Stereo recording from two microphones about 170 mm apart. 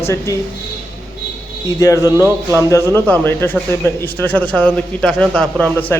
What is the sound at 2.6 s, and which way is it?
A man's voice, 15° left (ahead or behind).